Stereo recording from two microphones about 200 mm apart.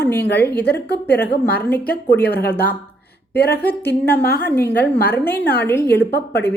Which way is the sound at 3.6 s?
10° left (ahead or behind).